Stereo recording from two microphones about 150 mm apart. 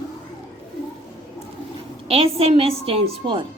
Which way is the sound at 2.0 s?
40° right (ahead or behind).